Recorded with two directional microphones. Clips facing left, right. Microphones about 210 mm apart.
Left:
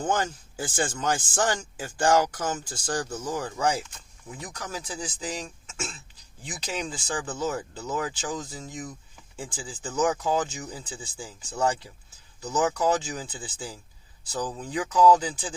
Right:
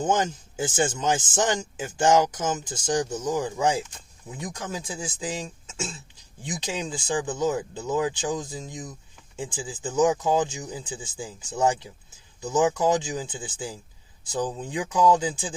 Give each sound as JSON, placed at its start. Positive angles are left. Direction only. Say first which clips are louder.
{"t": 0.0, "sound": "speech", "louder": "right 3 dB", "side_deg": -20}